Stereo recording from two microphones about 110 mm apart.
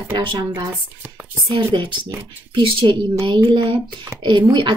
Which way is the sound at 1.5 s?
55° right (ahead or behind).